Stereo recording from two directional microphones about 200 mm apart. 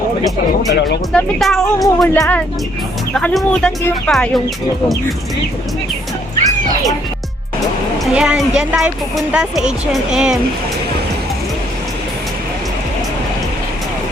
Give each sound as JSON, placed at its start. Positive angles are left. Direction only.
{"t": 0.7, "sound": "speech", "side_deg": 55}
{"t": 1.1, "sound": "a woman's voice", "side_deg": 0}
{"t": 2.0, "sound": "a woman's voice", "side_deg": 15}
{"t": 8.1, "sound": "a woman's voice", "side_deg": -5}